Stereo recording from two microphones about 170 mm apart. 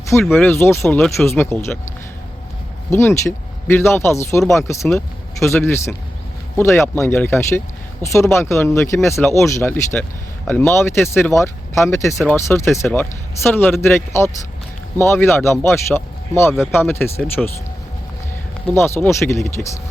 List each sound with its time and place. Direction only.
0.1 s speech: 10° left (ahead or behind)
2.9 s speech: 15° left (ahead or behind)
18.7 s speech: 15° left (ahead or behind)